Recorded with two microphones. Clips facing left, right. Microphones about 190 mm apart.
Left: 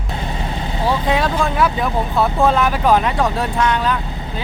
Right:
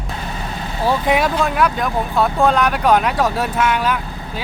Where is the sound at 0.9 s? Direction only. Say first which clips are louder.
Right 2 dB; 10° right (ahead or behind).